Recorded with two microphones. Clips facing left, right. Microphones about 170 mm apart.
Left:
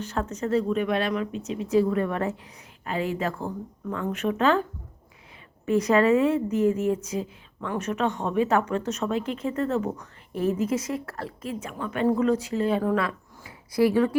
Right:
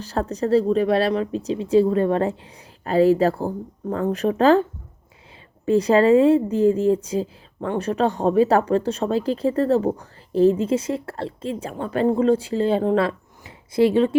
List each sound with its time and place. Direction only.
0.0 s a woman's voice: 35° right (ahead or behind)
5.6 s a woman's voice: 30° right (ahead or behind)